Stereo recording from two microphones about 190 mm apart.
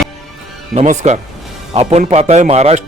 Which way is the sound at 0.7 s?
40° right (ahead or behind).